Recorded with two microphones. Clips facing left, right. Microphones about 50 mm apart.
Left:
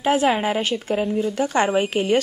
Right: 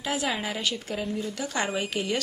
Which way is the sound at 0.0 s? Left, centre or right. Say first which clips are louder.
Left 10 dB; left.